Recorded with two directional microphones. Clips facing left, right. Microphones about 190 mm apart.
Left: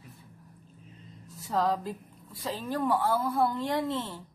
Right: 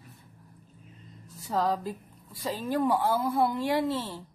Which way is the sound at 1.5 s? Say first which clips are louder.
Even; centre (ahead or behind).